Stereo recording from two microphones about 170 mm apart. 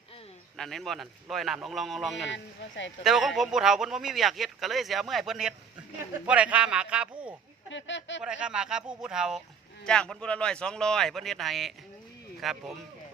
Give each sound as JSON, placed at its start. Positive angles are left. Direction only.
{"t": 0.5, "sound": "speech", "side_deg": 0}
{"t": 2.2, "sound": "speech", "side_deg": 90}
{"t": 3.0, "sound": "speech", "side_deg": 0}
{"t": 7.7, "sound": "speech", "side_deg": 90}
{"t": 8.2, "sound": "speech", "side_deg": -5}